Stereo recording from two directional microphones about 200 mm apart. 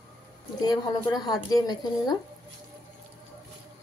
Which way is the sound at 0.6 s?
20° left (ahead or behind).